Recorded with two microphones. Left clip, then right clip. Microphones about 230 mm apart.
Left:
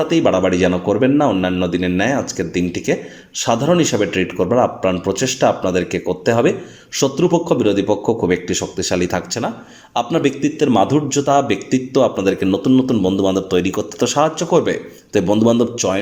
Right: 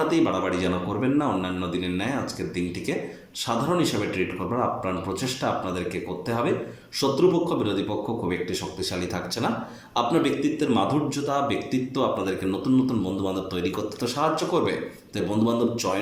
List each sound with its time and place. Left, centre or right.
0.1 s a man's voice: left